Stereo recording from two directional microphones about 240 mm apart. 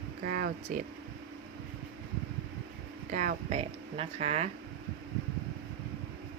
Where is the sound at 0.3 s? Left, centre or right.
Right.